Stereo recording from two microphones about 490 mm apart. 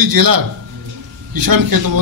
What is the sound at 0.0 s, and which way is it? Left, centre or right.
Speech, right.